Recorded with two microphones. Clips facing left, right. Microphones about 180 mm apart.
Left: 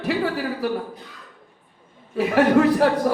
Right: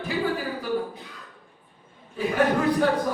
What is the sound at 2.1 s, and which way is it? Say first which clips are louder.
Speech: left 6 dB; 75° left (ahead or behind).